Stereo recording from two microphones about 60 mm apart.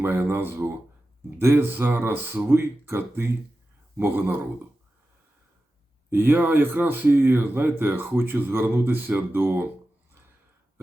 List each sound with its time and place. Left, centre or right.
0.0 s speech: right
6.1 s speech: right